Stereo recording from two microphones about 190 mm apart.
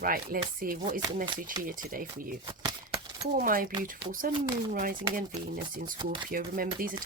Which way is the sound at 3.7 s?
25° right (ahead or behind).